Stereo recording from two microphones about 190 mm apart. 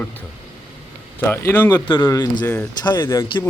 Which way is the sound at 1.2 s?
10° left (ahead or behind).